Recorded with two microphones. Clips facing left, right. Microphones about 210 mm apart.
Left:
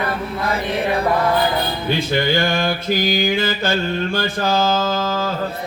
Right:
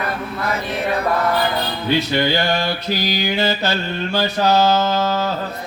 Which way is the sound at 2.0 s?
50° left (ahead or behind).